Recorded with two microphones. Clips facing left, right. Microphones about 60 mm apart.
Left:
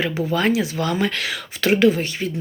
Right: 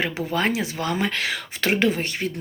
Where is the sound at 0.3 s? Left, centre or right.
Right.